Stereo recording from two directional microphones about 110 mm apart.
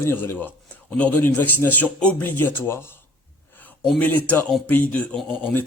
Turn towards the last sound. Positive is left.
turn(degrees=15)  # may be behind; listen again after turning